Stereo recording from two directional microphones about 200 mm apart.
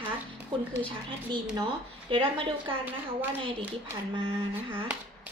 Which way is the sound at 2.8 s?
10° right (ahead or behind).